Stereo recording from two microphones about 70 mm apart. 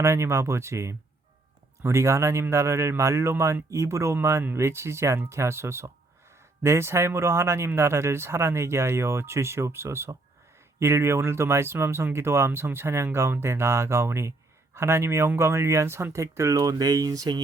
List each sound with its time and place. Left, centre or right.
0.0 s speech: right